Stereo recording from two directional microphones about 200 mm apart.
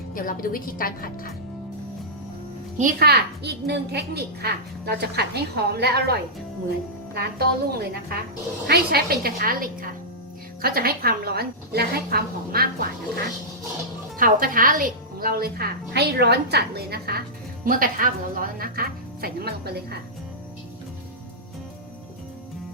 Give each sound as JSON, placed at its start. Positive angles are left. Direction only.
{"t": 0.1, "sound": "speech", "side_deg": 45}
{"t": 2.7, "sound": "a woman's voice", "side_deg": -45}
{"t": 14.2, "sound": "a woman's voice", "side_deg": -45}